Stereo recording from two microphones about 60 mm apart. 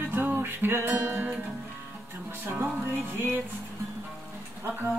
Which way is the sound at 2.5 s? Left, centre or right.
Centre.